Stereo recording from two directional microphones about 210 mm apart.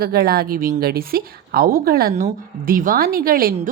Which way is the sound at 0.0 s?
45° right (ahead or behind).